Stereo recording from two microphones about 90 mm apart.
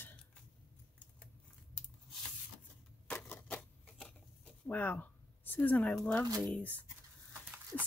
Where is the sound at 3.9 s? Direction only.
5° left (ahead or behind).